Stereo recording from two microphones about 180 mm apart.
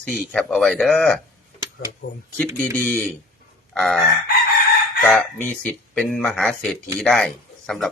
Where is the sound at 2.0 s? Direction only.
70° left (ahead or behind).